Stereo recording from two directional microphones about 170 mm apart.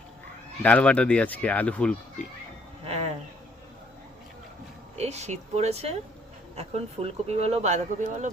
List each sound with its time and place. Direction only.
0.6 s speech: 10° left (ahead or behind)
2.8 s speech: 35° right (ahead or behind)
4.9 s speech: 40° right (ahead or behind)